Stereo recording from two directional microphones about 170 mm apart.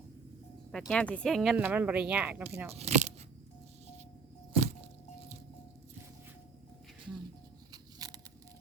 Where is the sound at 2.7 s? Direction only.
40° right (ahead or behind).